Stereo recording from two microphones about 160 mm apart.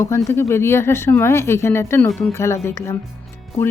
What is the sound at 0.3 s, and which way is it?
Speech, 15° left (ahead or behind).